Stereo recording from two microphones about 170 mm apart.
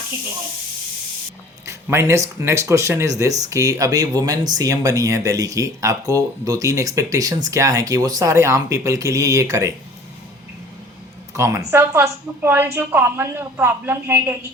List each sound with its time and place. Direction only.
1.6 s speech: 15° right (ahead or behind)
11.3 s a woman's voice: 15° right (ahead or behind)